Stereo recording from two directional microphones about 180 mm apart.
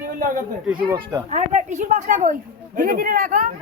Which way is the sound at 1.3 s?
40° right (ahead or behind).